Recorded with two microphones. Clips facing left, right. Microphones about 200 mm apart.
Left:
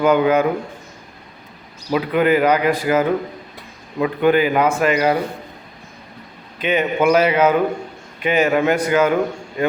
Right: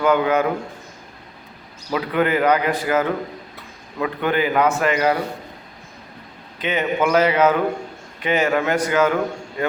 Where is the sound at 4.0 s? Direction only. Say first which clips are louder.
Left 5 dB; 20° left (ahead or behind).